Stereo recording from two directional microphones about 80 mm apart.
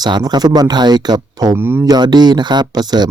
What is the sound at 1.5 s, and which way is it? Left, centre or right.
Speech, right.